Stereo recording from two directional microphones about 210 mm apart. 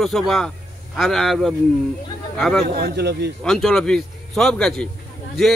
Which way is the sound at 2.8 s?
50° right (ahead or behind).